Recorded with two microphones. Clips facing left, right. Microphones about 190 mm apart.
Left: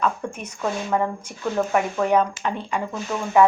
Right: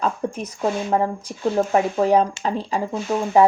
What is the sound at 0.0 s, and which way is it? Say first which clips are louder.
A woman's voice: right 2 dB; 35° right (ahead or behind).